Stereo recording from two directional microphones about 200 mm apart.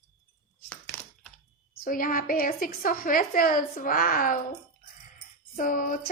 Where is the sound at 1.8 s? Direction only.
45° left (ahead or behind).